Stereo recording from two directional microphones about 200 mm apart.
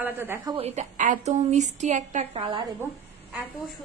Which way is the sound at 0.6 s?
35° right (ahead or behind).